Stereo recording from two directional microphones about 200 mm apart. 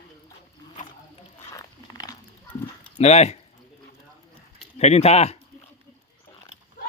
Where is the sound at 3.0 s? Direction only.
35° left (ahead or behind).